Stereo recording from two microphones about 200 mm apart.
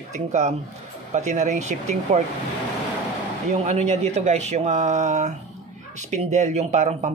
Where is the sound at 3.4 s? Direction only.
35° right (ahead or behind).